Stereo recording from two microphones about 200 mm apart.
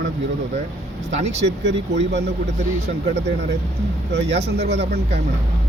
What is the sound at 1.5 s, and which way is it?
A man's voice, 60° right (ahead or behind).